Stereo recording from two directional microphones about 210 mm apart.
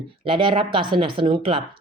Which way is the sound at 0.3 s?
25° right (ahead or behind).